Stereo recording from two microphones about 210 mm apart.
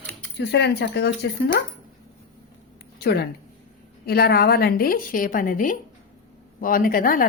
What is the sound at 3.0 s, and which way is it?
A woman's voice, 50° left (ahead or behind).